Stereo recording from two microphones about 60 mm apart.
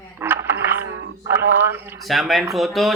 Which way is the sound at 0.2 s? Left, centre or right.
Right.